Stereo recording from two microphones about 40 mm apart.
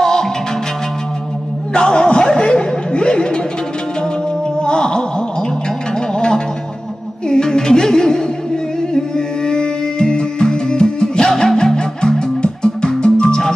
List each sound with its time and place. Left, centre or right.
0.0 s music: centre
1.7 s chuckle: left
4.6 s a sound: left
6.1 s music: left